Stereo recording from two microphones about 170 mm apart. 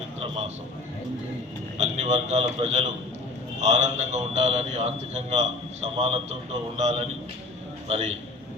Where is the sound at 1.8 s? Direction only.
40° right (ahead or behind).